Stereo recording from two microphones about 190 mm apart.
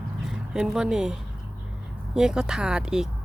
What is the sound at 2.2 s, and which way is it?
Speech, 5° right (ahead or behind).